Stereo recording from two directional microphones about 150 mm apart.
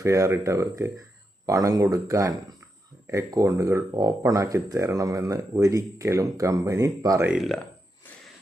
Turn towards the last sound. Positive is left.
turn(degrees=0)  # may be behind; listen again after turning